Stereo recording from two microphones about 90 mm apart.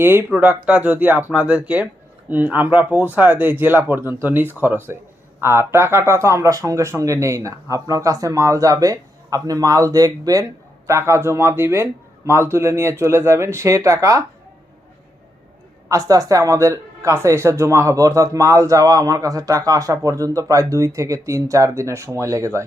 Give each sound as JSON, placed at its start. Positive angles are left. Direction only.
{"t": 0.0, "sound": "a man's voice", "side_deg": -25}
{"t": 10.8, "sound": "a man's voice", "side_deg": -30}
{"t": 15.9, "sound": "speech", "side_deg": -35}